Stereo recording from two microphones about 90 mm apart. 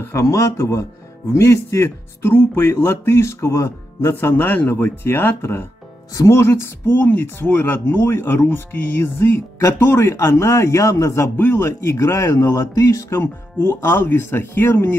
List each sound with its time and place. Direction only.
0.0 s a man's voice: 35° left (ahead or behind)